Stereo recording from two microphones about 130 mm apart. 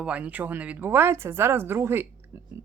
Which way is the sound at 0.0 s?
10° right (ahead or behind).